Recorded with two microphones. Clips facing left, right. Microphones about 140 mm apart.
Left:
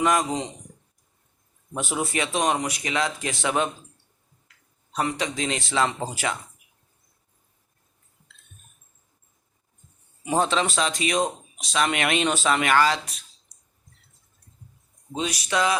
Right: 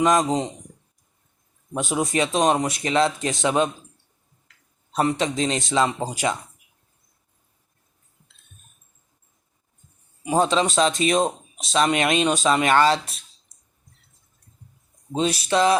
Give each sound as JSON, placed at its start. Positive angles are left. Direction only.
{"t": 0.0, "sound": "speech", "side_deg": -20}
{"t": 1.7, "sound": "speech", "side_deg": -15}
{"t": 4.9, "sound": "speech", "side_deg": -30}
{"t": 10.3, "sound": "speech", "side_deg": -15}
{"t": 15.1, "sound": "speech", "side_deg": -30}